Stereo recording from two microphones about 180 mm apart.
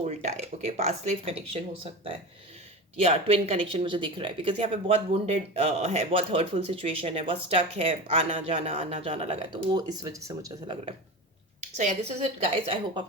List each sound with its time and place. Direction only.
0.0 s speech: 40° right (ahead or behind); by 10.8 s 20° right (ahead or behind)
11.8 s speech: 40° right (ahead or behind)